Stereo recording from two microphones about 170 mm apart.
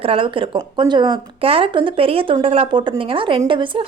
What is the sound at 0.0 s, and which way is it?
A woman's voice, 30° right (ahead or behind).